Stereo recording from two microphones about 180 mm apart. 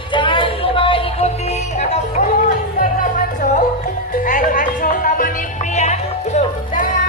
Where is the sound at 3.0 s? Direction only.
45° left (ahead or behind).